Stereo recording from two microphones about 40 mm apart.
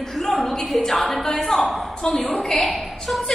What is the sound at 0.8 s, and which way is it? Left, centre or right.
A woman's voice, centre.